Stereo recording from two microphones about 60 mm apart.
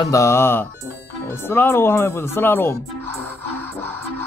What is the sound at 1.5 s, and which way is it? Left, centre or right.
Speech, left.